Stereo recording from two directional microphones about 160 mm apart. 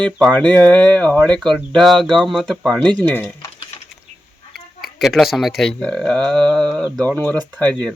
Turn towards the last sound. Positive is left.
turn(degrees=5)  # may be behind; listen again after turning